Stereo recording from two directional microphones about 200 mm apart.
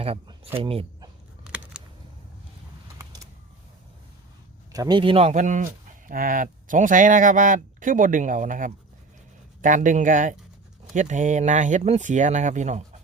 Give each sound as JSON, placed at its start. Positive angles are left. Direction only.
{"t": 0.0, "sound": "speech", "side_deg": -30}
{"t": 1.5, "sound": "a sound", "side_deg": -5}
{"t": 4.7, "sound": "speech", "side_deg": -20}